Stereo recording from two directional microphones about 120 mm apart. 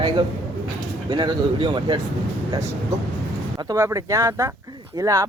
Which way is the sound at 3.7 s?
25° right (ahead or behind).